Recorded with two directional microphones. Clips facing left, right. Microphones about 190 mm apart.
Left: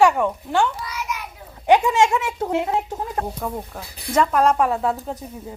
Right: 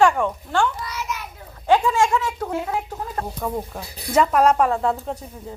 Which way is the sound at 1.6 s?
20° left (ahead or behind).